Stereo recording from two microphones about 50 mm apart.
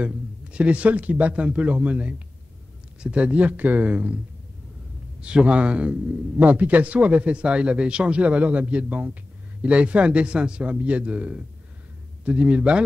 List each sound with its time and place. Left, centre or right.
0.0 s a man's voice: right
5.2 s a man's voice: right